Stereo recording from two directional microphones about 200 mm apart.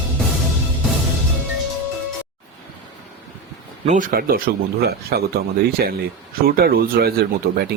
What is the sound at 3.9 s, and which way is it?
Speech, 45° right (ahead or behind).